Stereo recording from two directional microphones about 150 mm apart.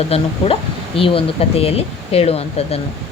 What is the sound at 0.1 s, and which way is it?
Speech, 40° left (ahead or behind).